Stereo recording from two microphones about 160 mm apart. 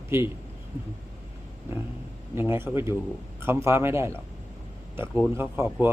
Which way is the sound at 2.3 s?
15° right (ahead or behind).